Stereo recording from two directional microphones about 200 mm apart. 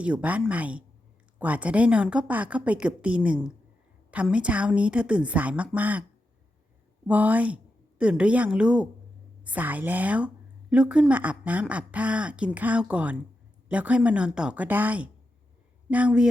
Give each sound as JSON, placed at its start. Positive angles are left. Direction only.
{"t": 0.0, "sound": "a woman's voice", "side_deg": -5}
{"t": 7.1, "sound": "a woman's voice", "side_deg": -10}